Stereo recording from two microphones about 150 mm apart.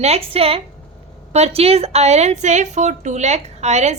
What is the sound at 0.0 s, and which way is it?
A woman's voice, 45° right (ahead or behind).